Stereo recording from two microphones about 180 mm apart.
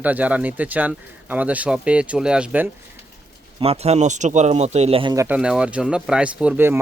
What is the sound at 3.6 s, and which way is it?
Speech, 35° right (ahead or behind).